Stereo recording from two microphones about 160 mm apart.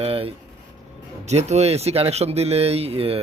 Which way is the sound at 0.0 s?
35° right (ahead or behind).